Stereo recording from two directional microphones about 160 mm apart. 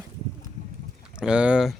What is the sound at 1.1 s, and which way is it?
Speech, 5° right (ahead or behind).